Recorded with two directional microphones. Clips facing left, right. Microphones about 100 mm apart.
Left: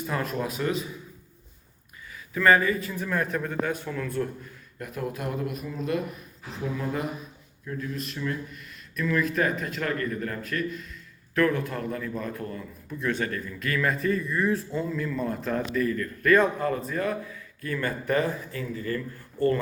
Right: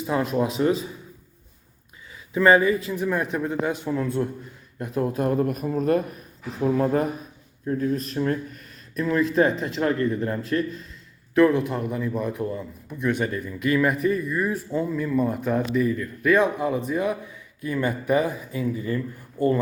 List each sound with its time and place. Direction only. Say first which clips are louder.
0.0 s a man's voice: right 6 dB; 20° right (ahead or behind)
2.3 s a man's voice: right 4 dB; 20° right (ahead or behind)
11.3 s a man's voice: right 6 dB; 20° right (ahead or behind)